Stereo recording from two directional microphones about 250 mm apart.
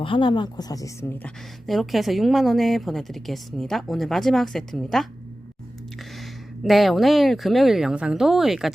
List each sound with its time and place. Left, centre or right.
0.0 s speech: centre
1.6 s a woman's voice: centre
6.1 s a woman's voice: centre